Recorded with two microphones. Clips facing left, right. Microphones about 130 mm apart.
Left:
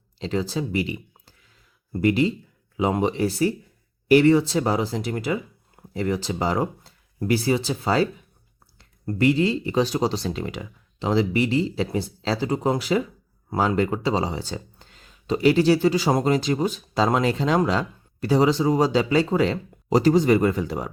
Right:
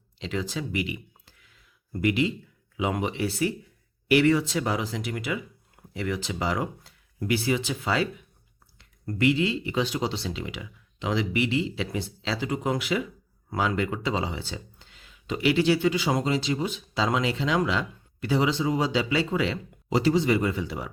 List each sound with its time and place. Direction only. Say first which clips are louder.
0.2 s speech: left 5 dB; 35° left (ahead or behind)